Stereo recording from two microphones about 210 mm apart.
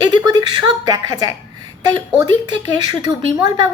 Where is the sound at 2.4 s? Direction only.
20° right (ahead or behind).